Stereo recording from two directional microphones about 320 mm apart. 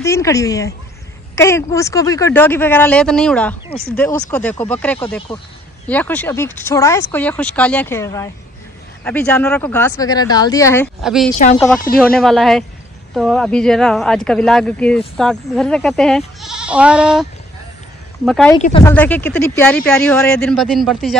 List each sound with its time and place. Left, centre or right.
0.0 s speech: centre
11.3 s speech: left
11.6 s speech: centre
18.6 s speech: centre